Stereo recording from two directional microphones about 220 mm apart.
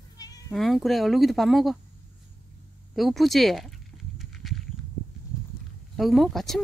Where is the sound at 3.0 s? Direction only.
Centre (ahead or behind).